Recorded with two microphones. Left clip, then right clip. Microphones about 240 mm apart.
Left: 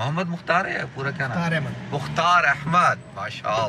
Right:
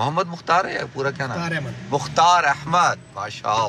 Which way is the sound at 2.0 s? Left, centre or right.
Centre.